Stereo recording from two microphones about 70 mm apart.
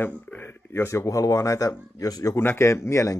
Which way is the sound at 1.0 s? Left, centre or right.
Left.